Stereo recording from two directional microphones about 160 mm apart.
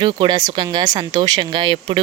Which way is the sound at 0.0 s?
30° right (ahead or behind).